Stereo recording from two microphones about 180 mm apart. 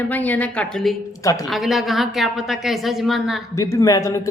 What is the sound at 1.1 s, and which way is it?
Speech, 20° left (ahead or behind).